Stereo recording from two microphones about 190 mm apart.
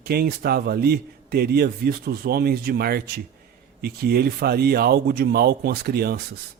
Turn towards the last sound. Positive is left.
turn(degrees=-55)  # may be behind; listen again after turning